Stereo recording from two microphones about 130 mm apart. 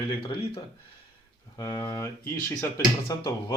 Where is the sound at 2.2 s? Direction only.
20° left (ahead or behind).